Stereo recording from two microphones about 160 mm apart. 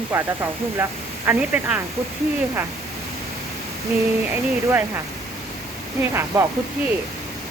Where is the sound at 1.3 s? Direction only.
10° right (ahead or behind).